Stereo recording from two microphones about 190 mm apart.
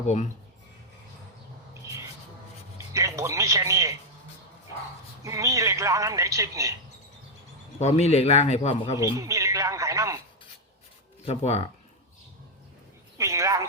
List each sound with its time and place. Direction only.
0.0 s a man's voice: 40° left (ahead or behind)
1.8 s a sound: 15° right (ahead or behind)
2.7 s music: 15° right (ahead or behind)
5.2 s a man's voice: 15° right (ahead or behind)
7.8 s a man's voice: 35° left (ahead or behind)
9.0 s speech: 15° right (ahead or behind)
11.3 s a man's voice: 35° left (ahead or behind)
13.1 s a sound: 15° right (ahead or behind)